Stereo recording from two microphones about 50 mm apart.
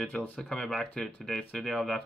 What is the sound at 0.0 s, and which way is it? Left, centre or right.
Speech, left.